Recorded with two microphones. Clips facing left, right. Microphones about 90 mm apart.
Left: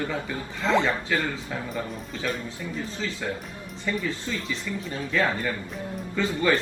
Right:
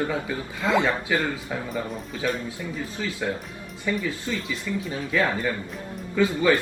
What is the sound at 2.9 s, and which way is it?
Speech, 15° right (ahead or behind).